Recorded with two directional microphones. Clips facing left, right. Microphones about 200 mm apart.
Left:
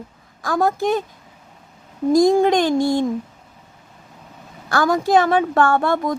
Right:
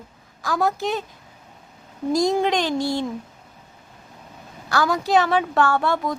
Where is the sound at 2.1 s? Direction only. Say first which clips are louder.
Left 6 dB; 50° left (ahead or behind).